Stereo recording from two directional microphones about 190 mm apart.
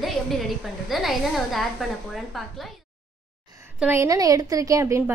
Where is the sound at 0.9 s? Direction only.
Centre (ahead or behind).